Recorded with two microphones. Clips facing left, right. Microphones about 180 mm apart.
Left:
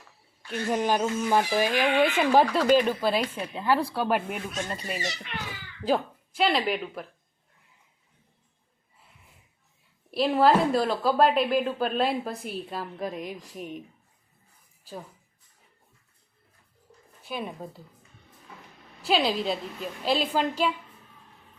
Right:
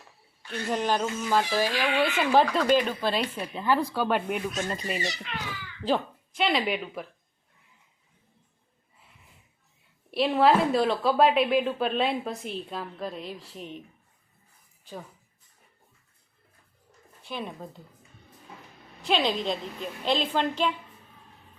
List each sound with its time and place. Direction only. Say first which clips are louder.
0.7 s a woman's voice: left 2 dB; 10° left (ahead or behind)
10.1 s a woman's voice: even; centre (ahead or behind)
17.2 s a woman's voice: left 1 dB; 5° left (ahead or behind)
19.0 s a woman's voice: left 1 dB; 5° left (ahead or behind)